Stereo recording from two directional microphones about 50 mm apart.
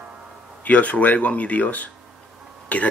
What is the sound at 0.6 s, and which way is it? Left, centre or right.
Speech, left.